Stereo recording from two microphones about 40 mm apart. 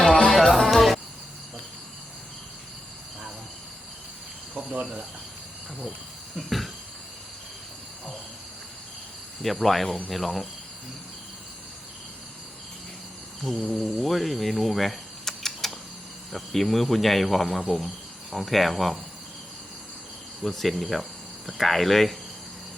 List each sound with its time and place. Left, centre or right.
0.3 s music: centre
4.5 s cricket: right
6.3 s a sound: centre
9.4 s a man's voice: centre
13.4 s a man's voice: centre
14.0 s a sound: centre
16.3 s a man's voice: centre
20.4 s speech: centre